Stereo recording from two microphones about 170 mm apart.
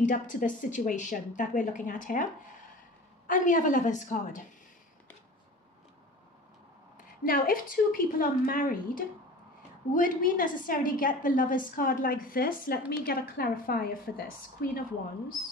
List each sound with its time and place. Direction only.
0.0 s speech: 50° left (ahead or behind)
3.3 s speech: 50° left (ahead or behind)
7.2 s a woman's voice: 55° left (ahead or behind)